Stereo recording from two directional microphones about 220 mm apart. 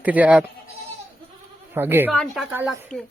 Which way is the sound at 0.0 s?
5° right (ahead or behind).